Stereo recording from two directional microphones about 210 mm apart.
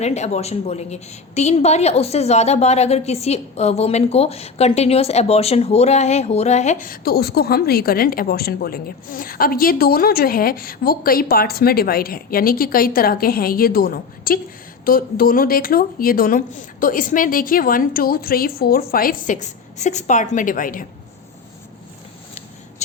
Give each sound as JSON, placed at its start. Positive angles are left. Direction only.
{"t": 0.0, "sound": "a woman's voice", "side_deg": 30}